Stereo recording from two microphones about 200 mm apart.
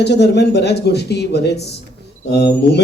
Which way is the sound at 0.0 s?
55° left (ahead or behind).